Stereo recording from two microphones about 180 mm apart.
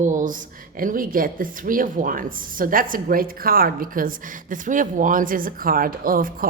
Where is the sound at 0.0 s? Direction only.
45° right (ahead or behind).